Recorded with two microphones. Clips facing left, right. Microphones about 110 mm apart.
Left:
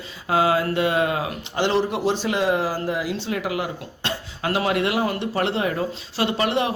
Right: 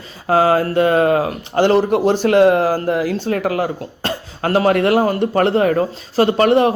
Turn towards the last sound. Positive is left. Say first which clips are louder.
# right 9 dB
turn(degrees=-45)  # may be behind; listen again after turning